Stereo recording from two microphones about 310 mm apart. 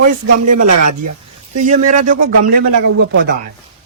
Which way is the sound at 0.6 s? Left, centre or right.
Right.